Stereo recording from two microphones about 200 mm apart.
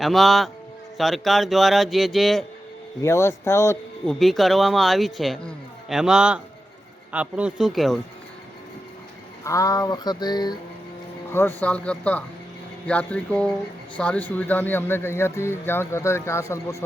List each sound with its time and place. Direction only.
0.0 s speech: centre (ahead or behind)
3.0 s speech: 15° left (ahead or behind)
4.1 s speech: centre (ahead or behind)
9.4 s a sound: 15° left (ahead or behind)
11.3 s speech: 10° left (ahead or behind)